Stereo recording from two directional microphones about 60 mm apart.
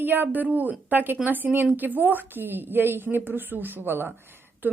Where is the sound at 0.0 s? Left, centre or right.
Right.